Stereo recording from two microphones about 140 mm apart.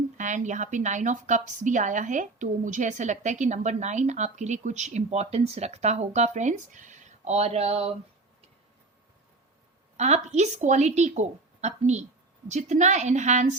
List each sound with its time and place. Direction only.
0.2 s a woman's voice: 60° right (ahead or behind); by 7.9 s 45° right (ahead or behind)
10.0 s a woman's voice: 55° right (ahead or behind)